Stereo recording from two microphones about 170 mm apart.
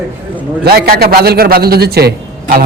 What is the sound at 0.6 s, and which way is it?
A man's voice, 65° right (ahead or behind).